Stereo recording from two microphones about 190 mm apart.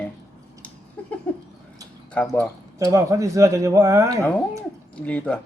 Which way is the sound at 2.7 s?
15° right (ahead or behind).